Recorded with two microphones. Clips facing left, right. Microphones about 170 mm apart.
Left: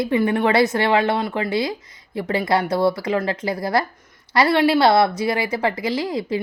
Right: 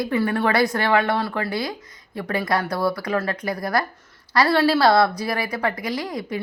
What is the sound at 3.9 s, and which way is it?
A woman's voice, 15° left (ahead or behind).